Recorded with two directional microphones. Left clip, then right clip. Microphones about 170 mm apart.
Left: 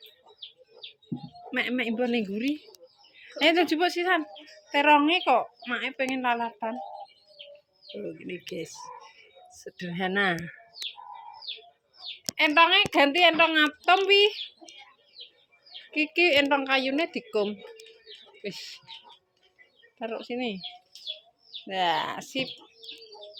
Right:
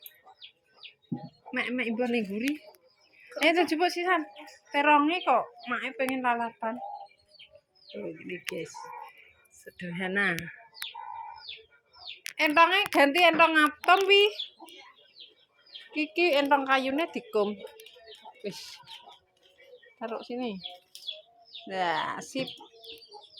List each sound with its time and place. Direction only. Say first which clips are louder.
1.5 s a woman's voice: left 2 dB; 15° left (ahead or behind)
8.0 s speech: right 1 dB; 20° left (ahead or behind)
12.4 s a woman's voice: left 2 dB; 5° left (ahead or behind)
15.9 s a woman's voice: left 3 dB; 10° left (ahead or behind)
20.0 s a woman's voice: left 2 dB; 10° left (ahead or behind)
21.7 s a woman's voice: left 3 dB; 10° left (ahead or behind)